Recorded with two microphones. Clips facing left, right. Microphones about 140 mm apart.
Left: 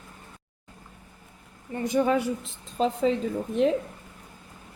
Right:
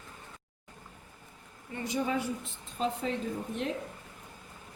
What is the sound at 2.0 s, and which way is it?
Speech, 75° left (ahead or behind).